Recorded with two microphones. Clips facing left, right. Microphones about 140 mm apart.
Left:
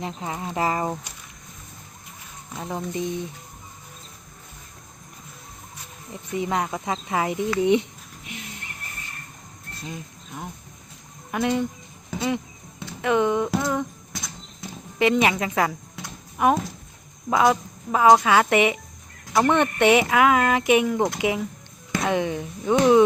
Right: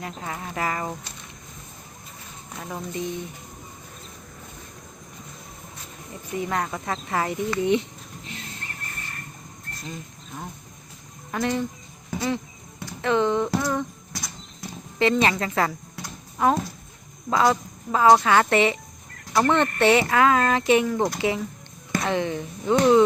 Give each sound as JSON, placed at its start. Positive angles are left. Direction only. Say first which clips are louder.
{"t": 0.0, "sound": "speech", "louder": "left 3 dB", "side_deg": 20}
{"t": 2.6, "sound": "speech", "louder": "left 3 dB", "side_deg": 20}
{"t": 6.3, "sound": "speech", "louder": "left 2 dB", "side_deg": 15}
{"t": 9.8, "sound": "speech", "louder": "left 2 dB", "side_deg": 10}
{"t": 13.0, "sound": "a sound", "louder": "left 1 dB", "side_deg": 10}
{"t": 14.6, "sound": "livestock", "louder": "left 1 dB", "side_deg": 15}
{"t": 17.2, "sound": "speech", "louder": "left 1 dB", "side_deg": 10}